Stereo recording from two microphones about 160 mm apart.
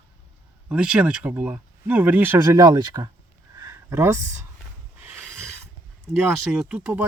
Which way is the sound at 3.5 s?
20° right (ahead or behind).